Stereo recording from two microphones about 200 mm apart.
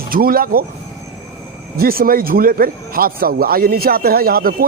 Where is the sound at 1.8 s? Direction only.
50° right (ahead or behind).